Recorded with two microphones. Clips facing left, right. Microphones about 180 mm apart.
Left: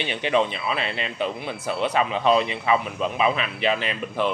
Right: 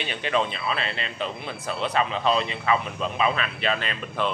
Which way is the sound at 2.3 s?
15° left (ahead or behind).